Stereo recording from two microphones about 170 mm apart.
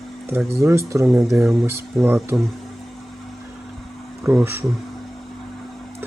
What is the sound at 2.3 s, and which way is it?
Speech, 20° right (ahead or behind).